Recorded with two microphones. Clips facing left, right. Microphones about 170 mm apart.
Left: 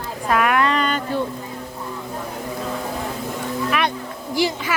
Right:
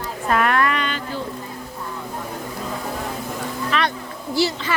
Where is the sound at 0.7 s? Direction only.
40° left (ahead or behind).